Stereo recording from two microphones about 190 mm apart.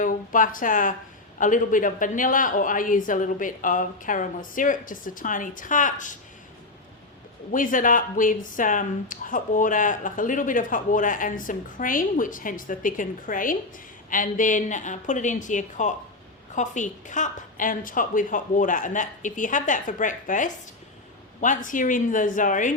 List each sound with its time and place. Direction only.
0.0 s speech: 45° left (ahead or behind)
7.5 s speech: 45° left (ahead or behind)